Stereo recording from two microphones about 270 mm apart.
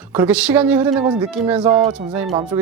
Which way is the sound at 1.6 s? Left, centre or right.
Right.